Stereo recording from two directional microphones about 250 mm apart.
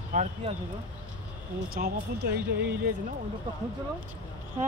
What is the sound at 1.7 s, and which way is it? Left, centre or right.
Speech, right.